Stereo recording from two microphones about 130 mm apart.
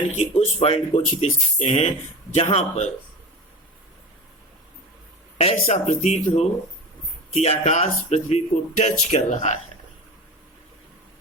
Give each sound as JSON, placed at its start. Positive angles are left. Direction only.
{"t": 0.2, "sound": "speech", "side_deg": 50}
{"t": 2.3, "sound": "speech", "side_deg": 55}
{"t": 5.6, "sound": "speech", "side_deg": 70}